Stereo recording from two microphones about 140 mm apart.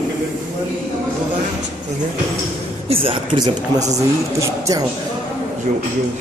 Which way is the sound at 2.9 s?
40° right (ahead or behind).